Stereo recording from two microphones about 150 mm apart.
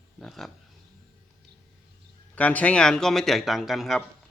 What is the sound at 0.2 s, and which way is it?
Speech, centre (ahead or behind).